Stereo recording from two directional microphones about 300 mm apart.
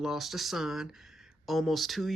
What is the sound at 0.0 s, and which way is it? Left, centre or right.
Speech, centre.